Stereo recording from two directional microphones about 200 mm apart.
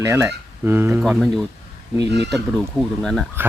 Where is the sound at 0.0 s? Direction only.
15° right (ahead or behind).